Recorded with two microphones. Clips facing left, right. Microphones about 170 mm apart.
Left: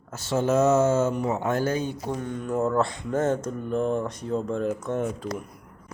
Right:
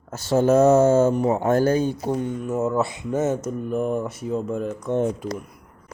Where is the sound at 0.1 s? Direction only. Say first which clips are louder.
Right 5 dB; 40° right (ahead or behind).